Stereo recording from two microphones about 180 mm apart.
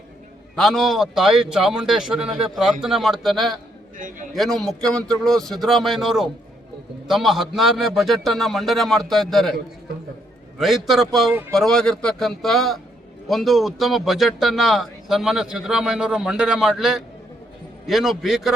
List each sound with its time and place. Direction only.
0.5 s a man's voice: centre (ahead or behind)
10.6 s a man's voice: centre (ahead or behind)